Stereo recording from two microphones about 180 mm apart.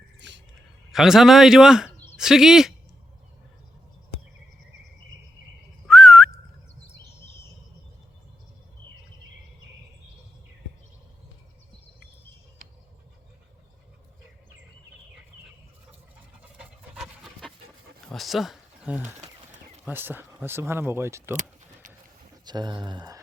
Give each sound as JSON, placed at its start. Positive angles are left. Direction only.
{"t": 0.2, "sound": "a sound", "side_deg": -80}
{"t": 0.9, "sound": "a man's voice", "side_deg": 0}
{"t": 5.9, "sound": "whistling", "side_deg": 0}
{"t": 16.4, "sound": "pant", "side_deg": -5}
{"t": 18.1, "sound": "a sound", "side_deg": 0}
{"t": 19.2, "sound": "pigeon", "side_deg": -40}
{"t": 19.8, "sound": "speech", "side_deg": -10}
{"t": 21.3, "sound": "keys jangling", "side_deg": -45}
{"t": 22.4, "sound": "speech", "side_deg": -25}